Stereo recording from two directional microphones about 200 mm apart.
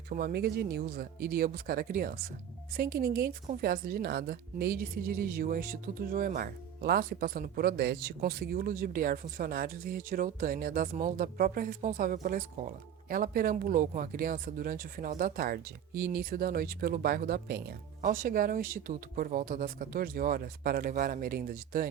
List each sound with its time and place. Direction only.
0.1 s speech: 45° right (ahead or behind)